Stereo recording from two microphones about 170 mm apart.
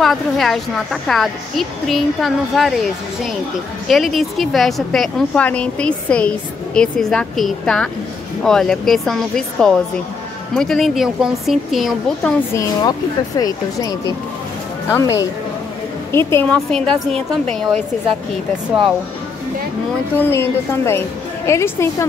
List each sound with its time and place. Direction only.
0.0 s a woman's voice: centre (ahead or behind)
13.4 s a woman's voice: 20° left (ahead or behind); by 17.7 s centre (ahead or behind)
20.2 s a woman's voice: 15° left (ahead or behind)